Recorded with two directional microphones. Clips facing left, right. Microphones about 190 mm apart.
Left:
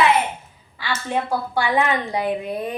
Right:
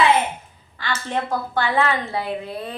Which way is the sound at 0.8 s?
10° left (ahead or behind).